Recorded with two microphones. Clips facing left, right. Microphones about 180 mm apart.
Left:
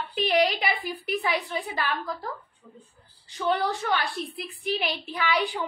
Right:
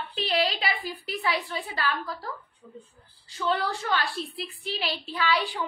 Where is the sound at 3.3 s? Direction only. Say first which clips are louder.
Left 2 dB; 20° left (ahead or behind).